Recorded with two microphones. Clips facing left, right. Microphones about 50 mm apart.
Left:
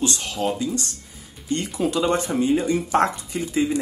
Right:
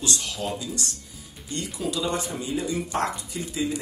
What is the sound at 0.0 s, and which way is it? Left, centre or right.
Speech, left.